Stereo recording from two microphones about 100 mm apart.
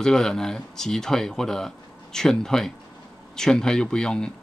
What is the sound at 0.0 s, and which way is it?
Speech, 5° left (ahead or behind).